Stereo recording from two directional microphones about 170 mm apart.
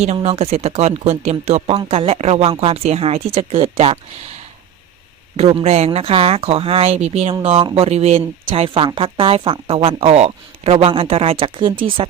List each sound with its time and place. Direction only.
0.0 s speech: 35° right (ahead or behind)
5.4 s speech: 35° right (ahead or behind)